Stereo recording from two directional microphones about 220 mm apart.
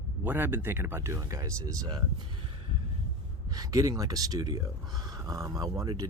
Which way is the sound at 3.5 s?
15° right (ahead or behind).